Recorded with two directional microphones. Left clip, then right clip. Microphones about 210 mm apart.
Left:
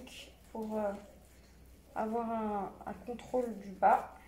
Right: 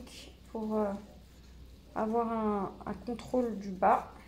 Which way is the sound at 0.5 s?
40° right (ahead or behind).